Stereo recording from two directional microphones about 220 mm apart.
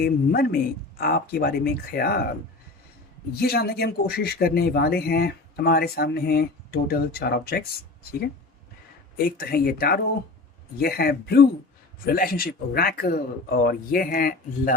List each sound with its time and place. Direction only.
0.0 s speech: 45° left (ahead or behind)
3.3 s speech: 45° left (ahead or behind)
9.1 s speech: 45° left (ahead or behind)